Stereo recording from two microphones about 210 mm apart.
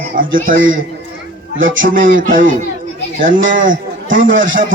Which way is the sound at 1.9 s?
40° right (ahead or behind).